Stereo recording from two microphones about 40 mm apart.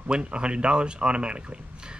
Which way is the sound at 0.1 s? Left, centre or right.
Right.